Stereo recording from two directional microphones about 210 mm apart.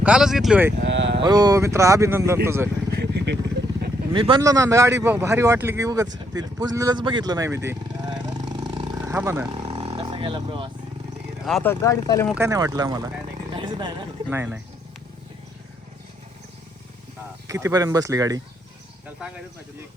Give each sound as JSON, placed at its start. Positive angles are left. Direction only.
{"t": 0.0, "sound": "speech", "side_deg": -5}
{"t": 0.8, "sound": "cattle", "side_deg": -55}
{"t": 1.2, "sound": "speech", "side_deg": -20}
{"t": 3.0, "sound": "vehicle", "side_deg": -50}
{"t": 4.1, "sound": "speech", "side_deg": -20}
{"t": 9.5, "sound": "roaring cats", "side_deg": -25}
{"t": 9.9, "sound": "a sound", "side_deg": -25}
{"t": 11.4, "sound": "speech", "side_deg": 5}
{"t": 12.3, "sound": "speech", "side_deg": -15}
{"t": 13.5, "sound": "vehicle", "side_deg": -20}
{"t": 14.3, "sound": "speech", "side_deg": -10}
{"t": 17.5, "sound": "speech", "side_deg": -15}